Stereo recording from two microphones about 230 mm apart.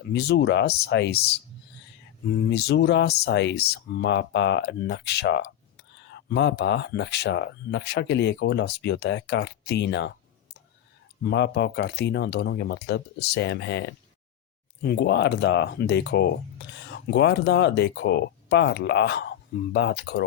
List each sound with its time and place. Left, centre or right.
0.1 s speech: left
2.5 s speech: left
11.2 s speech: left